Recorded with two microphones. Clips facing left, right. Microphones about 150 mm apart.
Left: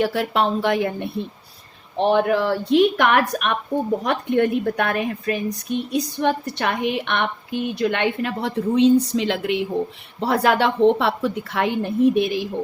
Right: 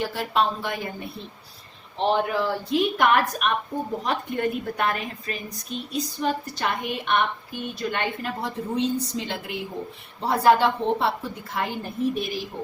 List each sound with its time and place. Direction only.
0.0 s a woman's voice: 60° left (ahead or behind)
2.1 s a woman's voice: 70° left (ahead or behind)